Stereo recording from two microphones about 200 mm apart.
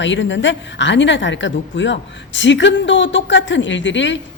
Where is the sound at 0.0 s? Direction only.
65° left (ahead or behind).